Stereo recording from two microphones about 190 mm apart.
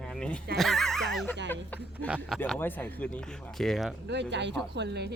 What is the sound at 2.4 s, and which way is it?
Speech, 10° left (ahead or behind).